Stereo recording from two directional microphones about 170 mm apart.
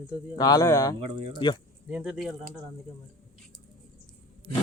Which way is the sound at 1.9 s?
5° right (ahead or behind).